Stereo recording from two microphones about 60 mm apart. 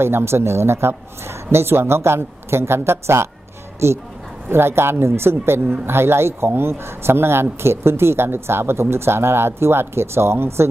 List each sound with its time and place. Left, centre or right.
0.0 s speech: right